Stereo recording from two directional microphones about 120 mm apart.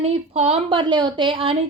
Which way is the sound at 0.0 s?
60° right (ahead or behind).